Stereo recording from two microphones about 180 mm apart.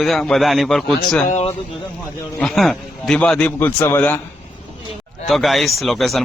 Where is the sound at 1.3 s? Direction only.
35° left (ahead or behind).